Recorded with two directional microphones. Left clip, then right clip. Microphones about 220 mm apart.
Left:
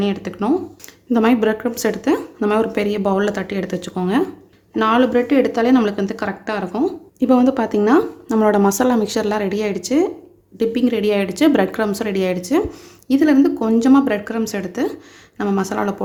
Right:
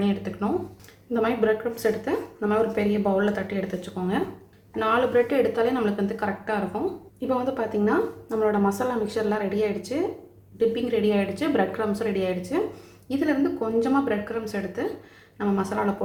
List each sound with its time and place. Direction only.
0.0 s speech: 45° left (ahead or behind)